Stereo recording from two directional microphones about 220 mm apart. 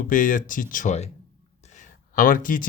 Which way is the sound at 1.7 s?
35° left (ahead or behind).